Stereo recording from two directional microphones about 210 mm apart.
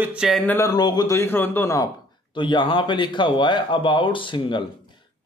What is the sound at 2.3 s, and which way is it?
Speech, 20° left (ahead or behind).